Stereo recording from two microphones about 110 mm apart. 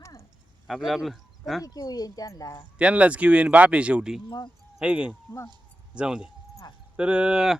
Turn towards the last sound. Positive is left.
turn(degrees=-5)  # may be behind; listen again after turning